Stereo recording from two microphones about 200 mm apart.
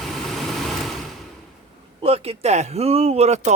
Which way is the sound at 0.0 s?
Centre (ahead or behind).